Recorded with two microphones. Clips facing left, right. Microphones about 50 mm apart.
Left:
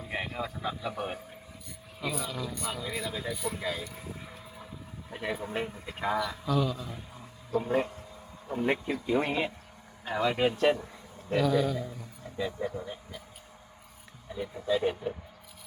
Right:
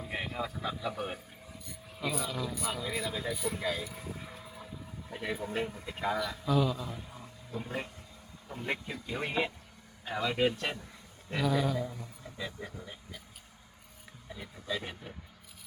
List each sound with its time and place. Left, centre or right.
0.0 s speech: centre
8.6 s speech: left
11.3 s a man's voice: centre
12.8 s speech: centre
14.3 s speech: centre